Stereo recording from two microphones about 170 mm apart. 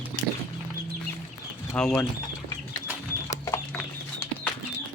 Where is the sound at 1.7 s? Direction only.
5° left (ahead or behind).